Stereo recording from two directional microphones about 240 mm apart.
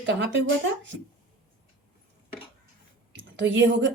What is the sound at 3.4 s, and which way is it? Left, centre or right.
Speech, right.